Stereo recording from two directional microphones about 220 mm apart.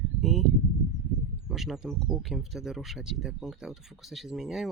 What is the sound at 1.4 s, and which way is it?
Speech, centre (ahead or behind).